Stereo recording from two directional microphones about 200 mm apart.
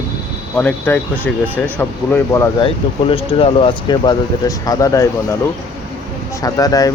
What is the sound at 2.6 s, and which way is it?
Speech, 25° left (ahead or behind).